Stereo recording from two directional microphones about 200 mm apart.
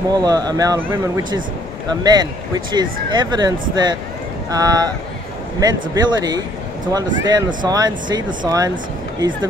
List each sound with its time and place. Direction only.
0.2 s speech: 20° right (ahead or behind)